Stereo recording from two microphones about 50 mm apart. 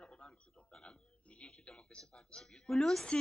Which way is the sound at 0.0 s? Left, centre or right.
Left.